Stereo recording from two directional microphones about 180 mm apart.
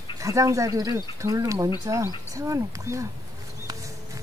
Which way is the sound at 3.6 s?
20° right (ahead or behind).